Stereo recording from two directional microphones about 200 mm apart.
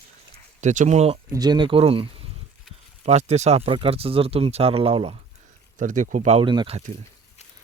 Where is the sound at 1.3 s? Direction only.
20° right (ahead or behind).